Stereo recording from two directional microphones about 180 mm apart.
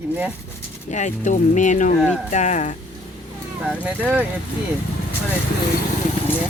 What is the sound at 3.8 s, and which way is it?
Speech, 5° right (ahead or behind).